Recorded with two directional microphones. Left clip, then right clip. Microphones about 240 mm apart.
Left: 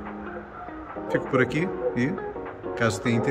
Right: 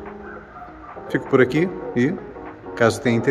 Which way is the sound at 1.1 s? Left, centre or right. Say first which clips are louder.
Right 6 dB; right.